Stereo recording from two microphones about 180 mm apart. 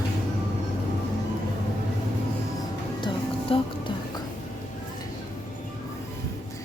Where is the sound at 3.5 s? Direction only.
30° left (ahead or behind).